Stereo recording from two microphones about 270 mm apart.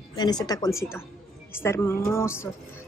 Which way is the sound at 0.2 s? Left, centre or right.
Centre.